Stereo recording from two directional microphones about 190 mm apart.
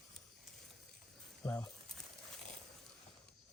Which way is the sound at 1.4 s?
15° left (ahead or behind).